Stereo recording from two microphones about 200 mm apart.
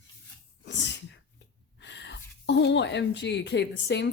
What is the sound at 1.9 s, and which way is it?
Speech, 60° left (ahead or behind).